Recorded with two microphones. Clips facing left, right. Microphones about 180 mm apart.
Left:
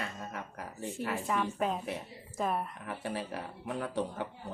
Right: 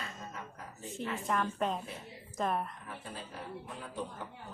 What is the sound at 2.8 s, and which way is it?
Speech, 70° left (ahead or behind).